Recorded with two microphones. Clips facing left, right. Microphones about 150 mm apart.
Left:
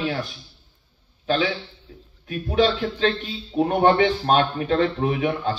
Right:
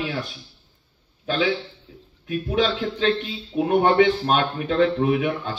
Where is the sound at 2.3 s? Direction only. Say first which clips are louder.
Left 2 dB; 40° left (ahead or behind).